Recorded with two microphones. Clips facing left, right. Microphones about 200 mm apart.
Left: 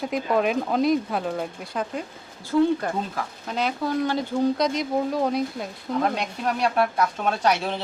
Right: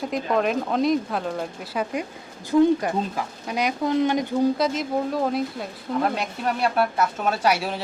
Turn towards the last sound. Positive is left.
turn(degrees=-10)  # may be behind; listen again after turning